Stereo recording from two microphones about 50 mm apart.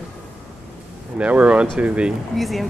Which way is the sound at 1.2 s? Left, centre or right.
Right.